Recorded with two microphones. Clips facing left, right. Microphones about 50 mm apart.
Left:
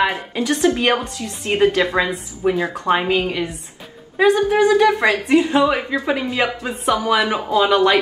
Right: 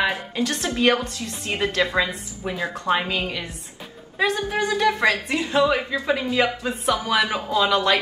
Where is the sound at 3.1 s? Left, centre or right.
Left.